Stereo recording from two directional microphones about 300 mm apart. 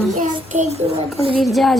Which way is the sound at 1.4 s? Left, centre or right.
Centre.